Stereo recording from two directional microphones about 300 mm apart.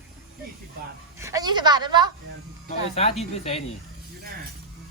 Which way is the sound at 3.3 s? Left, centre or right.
Centre.